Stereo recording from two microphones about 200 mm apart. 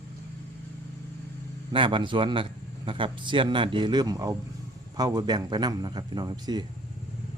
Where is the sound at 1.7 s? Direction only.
25° right (ahead or behind).